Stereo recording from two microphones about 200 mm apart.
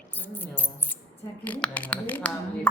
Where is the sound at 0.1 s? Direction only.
10° left (ahead or behind).